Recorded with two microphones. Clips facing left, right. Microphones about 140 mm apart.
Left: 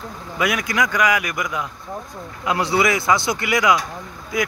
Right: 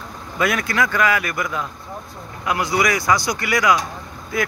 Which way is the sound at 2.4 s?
25° left (ahead or behind).